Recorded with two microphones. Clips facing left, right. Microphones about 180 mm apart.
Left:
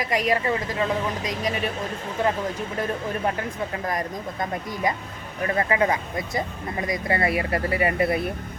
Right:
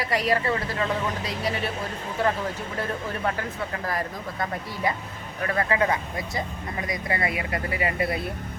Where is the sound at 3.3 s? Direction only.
20° left (ahead or behind).